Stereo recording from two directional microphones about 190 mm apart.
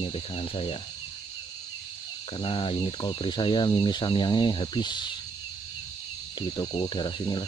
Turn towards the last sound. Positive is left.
turn(degrees=25)  # may be behind; listen again after turning